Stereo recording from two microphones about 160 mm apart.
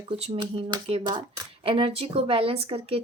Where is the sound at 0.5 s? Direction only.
35° right (ahead or behind).